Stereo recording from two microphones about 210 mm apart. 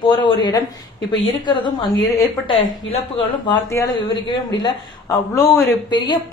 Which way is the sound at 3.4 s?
15° left (ahead or behind).